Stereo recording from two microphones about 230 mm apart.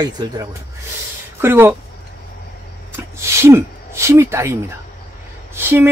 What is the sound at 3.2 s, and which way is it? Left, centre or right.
Speech, centre.